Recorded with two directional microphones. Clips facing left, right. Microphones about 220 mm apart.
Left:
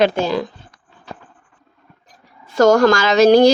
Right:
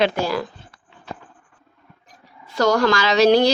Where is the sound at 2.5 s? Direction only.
45° left (ahead or behind).